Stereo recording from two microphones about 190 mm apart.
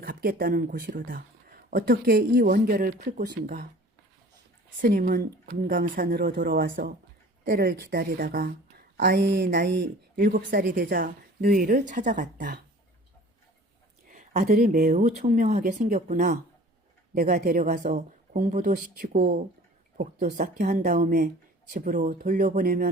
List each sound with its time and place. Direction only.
0.0 s speech: 50° right (ahead or behind)
3.2 s a sound: 65° right (ahead or behind)
4.8 s speech: 45° right (ahead or behind)
9.0 s a sound: 65° right (ahead or behind)
10.2 s speech: 50° right (ahead or behind)
14.1 s speech: 45° right (ahead or behind)